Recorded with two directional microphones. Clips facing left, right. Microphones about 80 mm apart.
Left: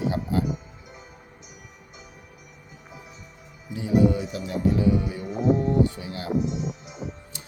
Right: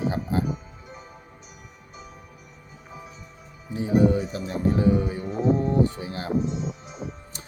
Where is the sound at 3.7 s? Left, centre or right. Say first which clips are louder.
Right 1 dB; right.